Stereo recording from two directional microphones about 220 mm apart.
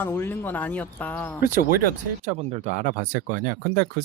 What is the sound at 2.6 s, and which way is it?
Speech, 50° left (ahead or behind).